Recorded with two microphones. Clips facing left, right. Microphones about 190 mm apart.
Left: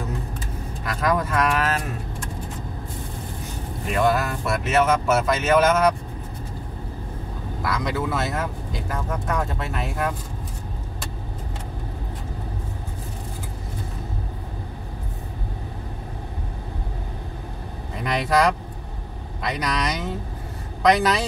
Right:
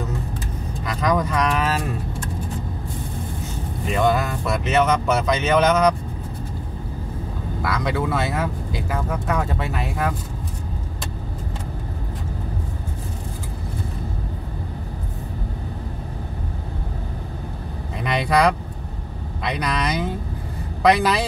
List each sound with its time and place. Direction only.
0.8 s speech: 5° left (ahead or behind)
3.9 s speech: 5° left (ahead or behind)
7.6 s speech: centre (ahead or behind)
18.0 s speech: centre (ahead or behind)